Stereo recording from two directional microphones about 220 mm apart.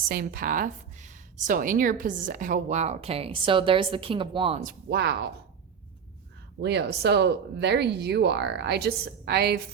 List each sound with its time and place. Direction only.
0.1 s speech: 40° right (ahead or behind); by 4.6 s 25° right (ahead or behind)
4.6 s speech: 50° right (ahead or behind)
6.6 s speech: 50° right (ahead or behind)